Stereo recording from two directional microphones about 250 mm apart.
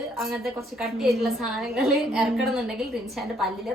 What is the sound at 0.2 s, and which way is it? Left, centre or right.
A woman's voice, centre.